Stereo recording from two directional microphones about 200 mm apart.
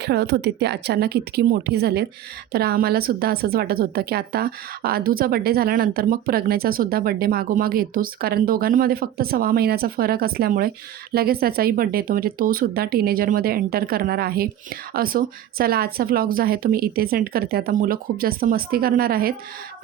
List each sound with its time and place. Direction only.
0.0 s speech: 55° right (ahead or behind)